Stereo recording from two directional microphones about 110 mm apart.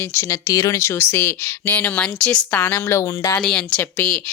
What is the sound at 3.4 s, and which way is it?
Speech, 5° left (ahead or behind).